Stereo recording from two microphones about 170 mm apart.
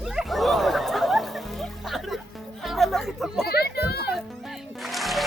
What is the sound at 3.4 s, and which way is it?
Children playing, 70° left (ahead or behind).